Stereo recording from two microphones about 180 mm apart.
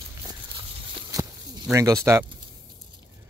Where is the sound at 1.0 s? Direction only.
20° right (ahead or behind).